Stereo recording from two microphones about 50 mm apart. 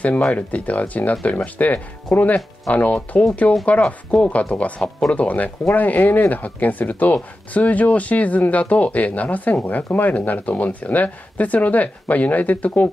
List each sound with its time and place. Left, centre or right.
0.3 s speech: left